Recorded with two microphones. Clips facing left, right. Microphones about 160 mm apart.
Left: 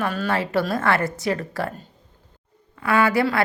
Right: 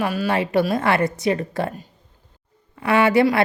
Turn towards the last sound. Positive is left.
turn(degrees=-20)  # may be behind; listen again after turning